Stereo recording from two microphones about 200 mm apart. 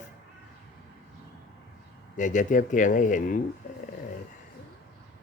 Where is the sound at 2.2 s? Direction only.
40° left (ahead or behind).